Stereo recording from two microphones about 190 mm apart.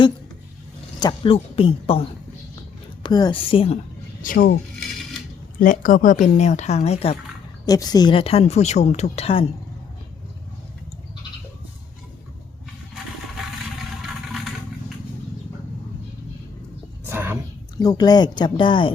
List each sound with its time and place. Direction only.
0.9 s a woman's voice: 25° left (ahead or behind)
4.2 s speech: 45° left (ahead or behind)
5.5 s speech: 45° left (ahead or behind)
7.6 s speech: 20° left (ahead or behind)
17.1 s whispering: 10° right (ahead or behind)
17.7 s a woman's voice: 20° left (ahead or behind)